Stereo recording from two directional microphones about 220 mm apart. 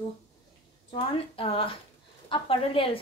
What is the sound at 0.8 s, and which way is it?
A woman's voice, 25° left (ahead or behind).